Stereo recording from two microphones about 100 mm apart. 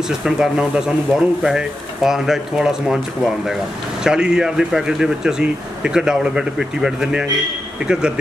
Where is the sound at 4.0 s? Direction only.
5° right (ahead or behind).